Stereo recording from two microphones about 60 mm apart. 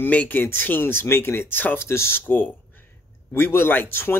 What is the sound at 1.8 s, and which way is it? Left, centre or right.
Speech, left.